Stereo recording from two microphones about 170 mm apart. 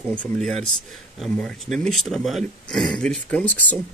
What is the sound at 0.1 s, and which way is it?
A man's voice, 5° left (ahead or behind).